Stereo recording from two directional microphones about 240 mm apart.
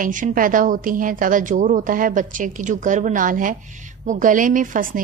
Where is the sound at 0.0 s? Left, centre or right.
Right.